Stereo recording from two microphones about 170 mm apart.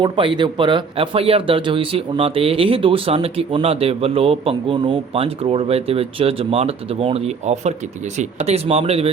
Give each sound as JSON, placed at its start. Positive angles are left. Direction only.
{"t": 0.0, "sound": "speech", "side_deg": -30}